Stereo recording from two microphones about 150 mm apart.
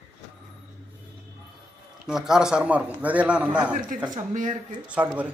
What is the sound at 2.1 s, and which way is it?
Speech, 5° right (ahead or behind).